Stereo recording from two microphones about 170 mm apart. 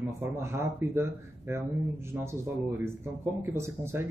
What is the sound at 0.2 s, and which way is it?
Speech, 15° right (ahead or behind).